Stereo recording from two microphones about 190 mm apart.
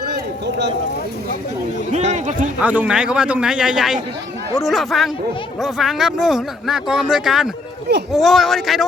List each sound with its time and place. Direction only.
0.1 s a sound: 60° right (ahead or behind)
1.9 s a man's voice: 35° right (ahead or behind)
2.6 s speech: 5° right (ahead or behind)